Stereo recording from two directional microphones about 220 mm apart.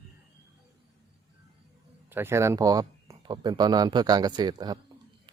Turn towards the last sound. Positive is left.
turn(degrees=-20)  # may be behind; listen again after turning